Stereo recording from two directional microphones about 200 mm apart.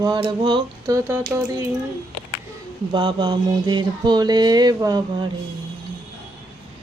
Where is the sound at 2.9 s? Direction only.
25° right (ahead or behind).